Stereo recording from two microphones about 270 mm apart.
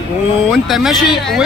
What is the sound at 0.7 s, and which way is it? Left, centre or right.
Speech, centre.